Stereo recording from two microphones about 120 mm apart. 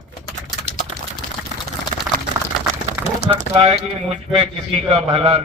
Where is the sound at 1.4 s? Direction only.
Centre (ahead or behind).